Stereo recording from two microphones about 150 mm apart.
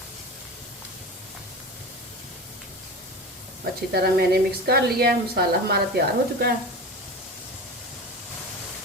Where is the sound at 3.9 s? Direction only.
90° right.